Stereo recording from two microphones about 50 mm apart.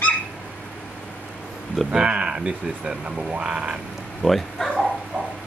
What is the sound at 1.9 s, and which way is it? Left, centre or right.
Speech, right.